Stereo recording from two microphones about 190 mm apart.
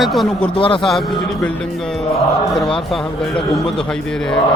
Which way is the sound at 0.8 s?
Centre (ahead or behind).